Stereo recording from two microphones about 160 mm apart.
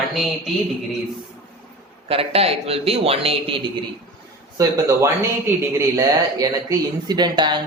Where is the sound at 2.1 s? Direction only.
35° right (ahead or behind).